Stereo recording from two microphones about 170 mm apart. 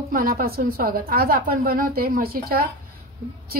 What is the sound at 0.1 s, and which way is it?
A woman's voice, 55° right (ahead or behind).